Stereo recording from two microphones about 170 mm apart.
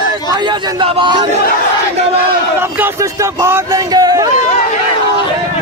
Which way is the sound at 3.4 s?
20° right (ahead or behind).